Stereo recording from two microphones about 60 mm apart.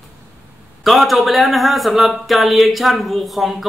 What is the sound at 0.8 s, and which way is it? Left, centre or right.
Speech, centre.